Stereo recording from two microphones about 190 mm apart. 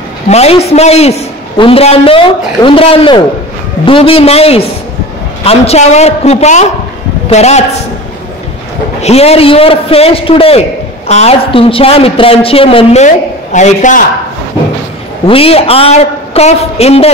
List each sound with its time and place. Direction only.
0.3 s a woman's voice: 35° left (ahead or behind)
9.0 s a woman's voice: 35° left (ahead or behind)
15.2 s a woman's voice: 30° left (ahead or behind)